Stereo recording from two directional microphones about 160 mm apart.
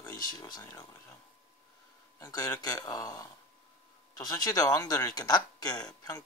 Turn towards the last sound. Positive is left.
turn(degrees=25)  # may be behind; listen again after turning